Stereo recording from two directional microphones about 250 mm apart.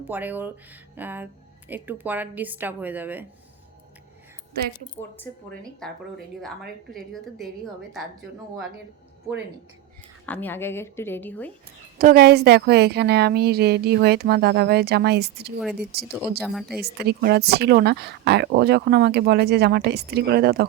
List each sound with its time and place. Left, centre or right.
0.0 s speech: centre
4.9 s a woman's voice: centre
10.2 s a woman's voice: centre
11.9 s speech: right
16.4 s a woman's voice: centre
16.8 s speech: right